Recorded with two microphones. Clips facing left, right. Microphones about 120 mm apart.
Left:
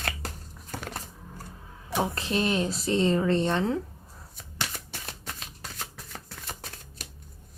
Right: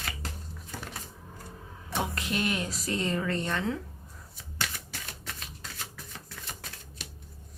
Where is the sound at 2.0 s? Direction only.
30° left (ahead or behind).